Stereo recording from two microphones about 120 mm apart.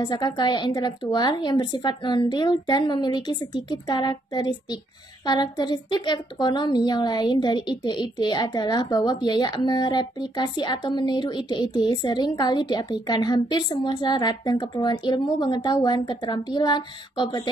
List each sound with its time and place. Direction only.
0.0 s a woman's voice: 35° left (ahead or behind)